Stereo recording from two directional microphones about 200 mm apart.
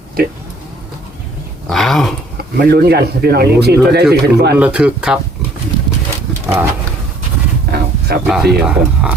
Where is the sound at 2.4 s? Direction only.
50° right (ahead or behind).